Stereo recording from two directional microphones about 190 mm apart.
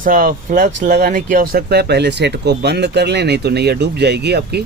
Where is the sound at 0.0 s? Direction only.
45° right (ahead or behind).